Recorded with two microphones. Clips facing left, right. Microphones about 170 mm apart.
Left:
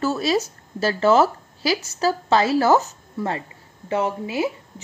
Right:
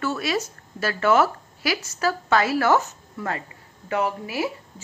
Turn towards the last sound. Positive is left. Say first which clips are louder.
# left 2 dB
turn(degrees=20)  # may be behind; listen again after turning